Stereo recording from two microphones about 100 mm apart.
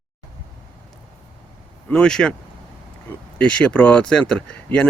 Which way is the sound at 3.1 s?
20° left (ahead or behind).